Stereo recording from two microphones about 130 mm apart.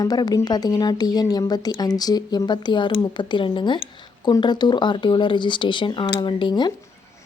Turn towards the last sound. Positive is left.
turn(degrees=35)  # may be behind; listen again after turning